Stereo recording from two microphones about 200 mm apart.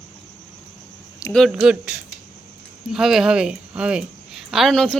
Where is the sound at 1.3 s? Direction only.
Centre (ahead or behind).